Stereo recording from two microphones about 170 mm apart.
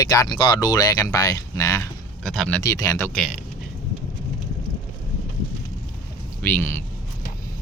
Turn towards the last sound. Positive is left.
turn(degrees=15)  # may be behind; listen again after turning